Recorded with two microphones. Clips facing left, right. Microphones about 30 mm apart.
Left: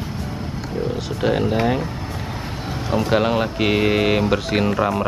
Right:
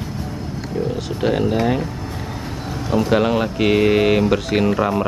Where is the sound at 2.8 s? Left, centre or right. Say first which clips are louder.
Right 2 dB; centre.